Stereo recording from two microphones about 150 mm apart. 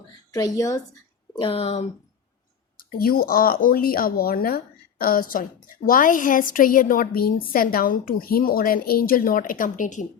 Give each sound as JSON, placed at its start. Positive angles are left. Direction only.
{"t": 0.3, "sound": "a woman's voice", "side_deg": 25}
{"t": 1.4, "sound": "speech", "side_deg": 40}
{"t": 3.0, "sound": "speech", "side_deg": 75}